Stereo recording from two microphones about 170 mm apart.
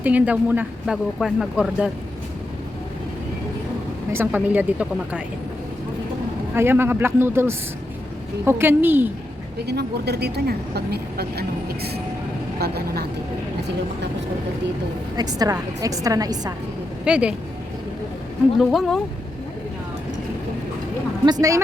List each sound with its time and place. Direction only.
0.0 s speech: 10° right (ahead or behind)
4.1 s speech: 10° right (ahead or behind)
6.5 s speech: 15° right (ahead or behind)
9.6 s a woman's voice: 75° right (ahead or behind)
15.1 s a woman's voice: 20° right (ahead or behind)
17.1 s speech: 5° right (ahead or behind)
18.6 s speech: centre (ahead or behind)
21.2 s a woman's voice: 20° right (ahead or behind)